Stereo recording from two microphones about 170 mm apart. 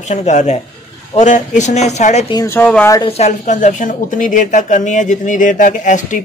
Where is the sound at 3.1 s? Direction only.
45° left (ahead or behind).